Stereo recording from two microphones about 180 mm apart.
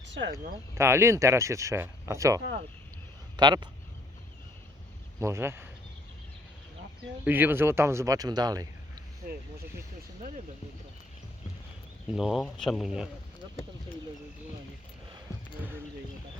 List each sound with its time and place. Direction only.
0.2 s speech: 85° right
0.8 s speech: 15° right (ahead or behind)
5.2 s speech: 15° right (ahead or behind)
7.3 s speech: 10° right (ahead or behind)
12.1 s speech: centre (ahead or behind)